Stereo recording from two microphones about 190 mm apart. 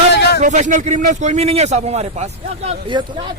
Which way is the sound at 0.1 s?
60° left (ahead or behind).